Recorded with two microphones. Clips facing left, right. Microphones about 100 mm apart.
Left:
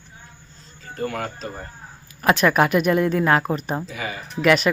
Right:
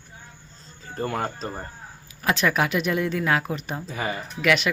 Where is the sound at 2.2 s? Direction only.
50° left (ahead or behind).